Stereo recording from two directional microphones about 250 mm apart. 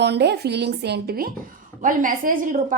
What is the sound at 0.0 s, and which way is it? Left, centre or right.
A woman's voice, right.